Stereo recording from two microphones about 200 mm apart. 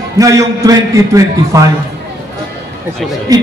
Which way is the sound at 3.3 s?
20° right (ahead or behind).